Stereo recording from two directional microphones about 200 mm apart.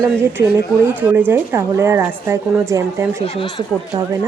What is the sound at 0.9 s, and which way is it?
A woman's voice, 10° right (ahead or behind).